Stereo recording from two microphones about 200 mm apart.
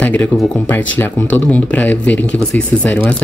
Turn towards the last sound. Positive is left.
turn(degrees=10)  # may be behind; listen again after turning